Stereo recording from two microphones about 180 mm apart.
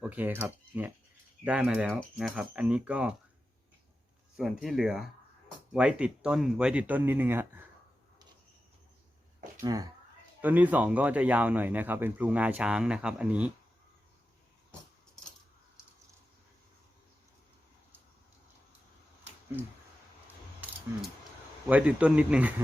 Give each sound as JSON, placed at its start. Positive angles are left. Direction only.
{"t": 0.0, "sound": "speech", "side_deg": -10}
{"t": 4.4, "sound": "speech", "side_deg": 0}
{"t": 9.6, "sound": "speech", "side_deg": -20}
{"t": 10.4, "sound": "speech", "side_deg": -10}
{"t": 21.7, "sound": "speech", "side_deg": -5}